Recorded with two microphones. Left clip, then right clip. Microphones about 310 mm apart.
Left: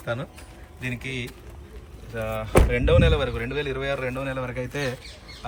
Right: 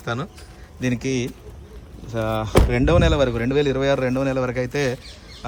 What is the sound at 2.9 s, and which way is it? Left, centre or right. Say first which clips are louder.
A man's voice: right 3 dB; centre.